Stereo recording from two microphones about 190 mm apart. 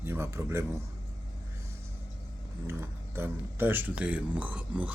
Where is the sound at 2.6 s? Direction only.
15° right (ahead or behind).